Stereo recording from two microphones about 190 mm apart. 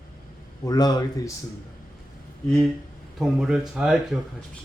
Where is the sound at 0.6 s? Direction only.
20° left (ahead or behind).